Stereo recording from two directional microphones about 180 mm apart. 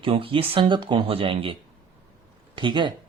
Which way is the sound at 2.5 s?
25° right (ahead or behind).